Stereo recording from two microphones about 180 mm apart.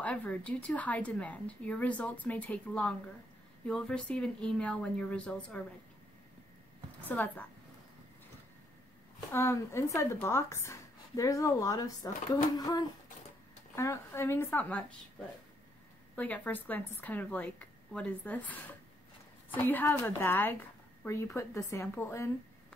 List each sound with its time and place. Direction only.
0.0 s a woman's voice: 5° left (ahead or behind)
7.1 s a woman's voice: 10° left (ahead or behind)
9.3 s a woman's voice: 15° left (ahead or behind)
16.2 s a woman's voice: 10° left (ahead or behind)